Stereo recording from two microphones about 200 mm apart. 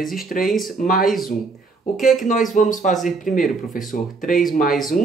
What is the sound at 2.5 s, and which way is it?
Speech, 40° left (ahead or behind).